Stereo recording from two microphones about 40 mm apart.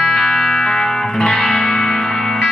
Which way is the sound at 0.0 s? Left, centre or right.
Centre.